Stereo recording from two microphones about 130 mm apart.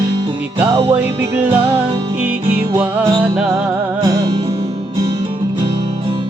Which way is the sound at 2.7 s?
15° right (ahead or behind).